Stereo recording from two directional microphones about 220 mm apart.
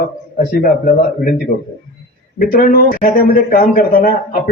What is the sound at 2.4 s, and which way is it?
A man's voice, 40° left (ahead or behind).